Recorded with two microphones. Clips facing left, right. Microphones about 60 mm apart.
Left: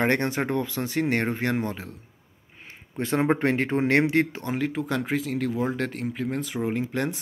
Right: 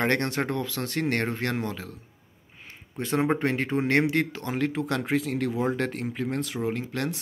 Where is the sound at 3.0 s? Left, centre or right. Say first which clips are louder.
Left 2 dB; left.